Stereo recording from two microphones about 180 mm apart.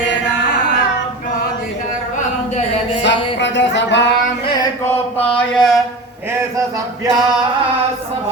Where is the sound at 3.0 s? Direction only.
75° left (ahead or behind).